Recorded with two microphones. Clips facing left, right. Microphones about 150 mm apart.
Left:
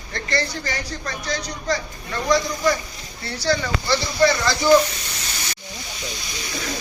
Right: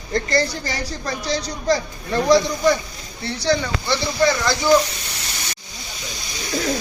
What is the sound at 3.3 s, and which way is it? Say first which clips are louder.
Speech: right 2 dB; 20° right (ahead or behind).